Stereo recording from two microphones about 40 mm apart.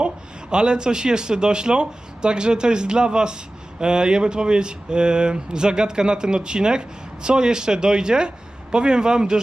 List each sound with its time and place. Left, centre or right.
0.5 s speech: right